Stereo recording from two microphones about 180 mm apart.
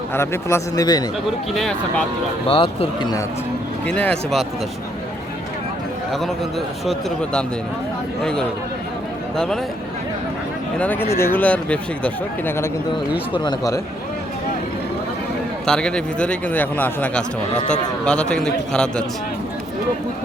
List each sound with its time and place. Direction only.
0.1 s speech: 15° left (ahead or behind)
2.5 s a man's voice: 30° left (ahead or behind)
3.8 s a man's voice: 5° left (ahead or behind)
6.1 s a man's voice: centre (ahead or behind)
10.8 s speech: 10° left (ahead or behind)
13.3 s a man's voice: 25° left (ahead or behind)
15.6 s a man's voice: 5° left (ahead or behind)